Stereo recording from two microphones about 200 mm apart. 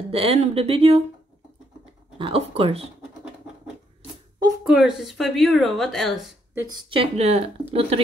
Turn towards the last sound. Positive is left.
turn(degrees=-30)  # may be behind; listen again after turning